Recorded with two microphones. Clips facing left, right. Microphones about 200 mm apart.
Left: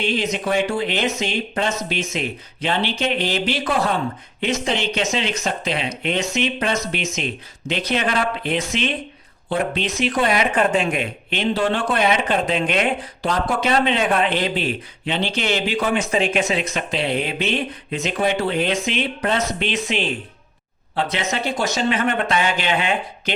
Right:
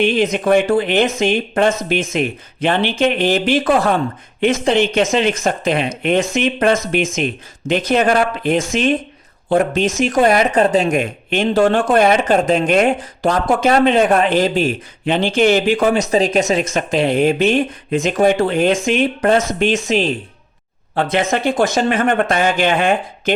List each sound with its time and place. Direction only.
0.0 s speech: 55° right (ahead or behind)
20.9 s speech: 50° right (ahead or behind)